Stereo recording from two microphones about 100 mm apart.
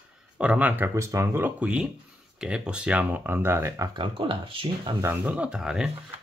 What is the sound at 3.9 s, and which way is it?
Speech, 60° right (ahead or behind).